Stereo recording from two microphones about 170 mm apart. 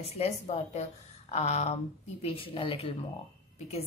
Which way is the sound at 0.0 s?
35° left (ahead or behind).